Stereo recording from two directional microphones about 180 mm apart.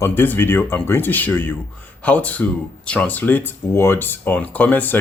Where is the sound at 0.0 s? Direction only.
10° left (ahead or behind).